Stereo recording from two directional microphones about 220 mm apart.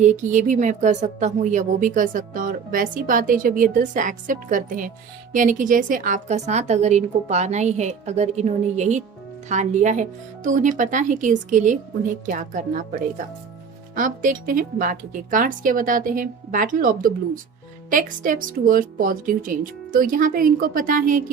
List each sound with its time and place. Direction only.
0.0 s speech: 35° right (ahead or behind)
13.9 s speech: 35° right (ahead or behind)